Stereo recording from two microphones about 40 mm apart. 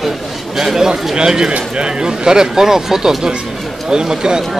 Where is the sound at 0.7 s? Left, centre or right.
Centre.